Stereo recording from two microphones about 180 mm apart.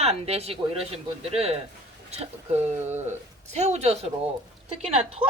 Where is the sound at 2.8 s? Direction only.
40° right (ahead or behind).